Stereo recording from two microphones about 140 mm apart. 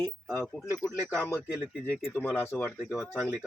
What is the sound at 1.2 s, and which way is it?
Speech, 15° left (ahead or behind).